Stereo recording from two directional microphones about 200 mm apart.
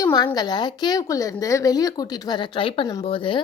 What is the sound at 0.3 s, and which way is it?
A woman's voice, 20° left (ahead or behind).